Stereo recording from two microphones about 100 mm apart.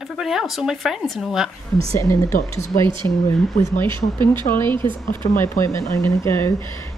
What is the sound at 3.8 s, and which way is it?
Speech, 50° right (ahead or behind).